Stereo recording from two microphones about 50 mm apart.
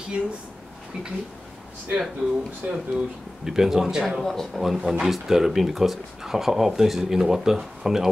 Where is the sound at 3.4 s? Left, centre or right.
Centre.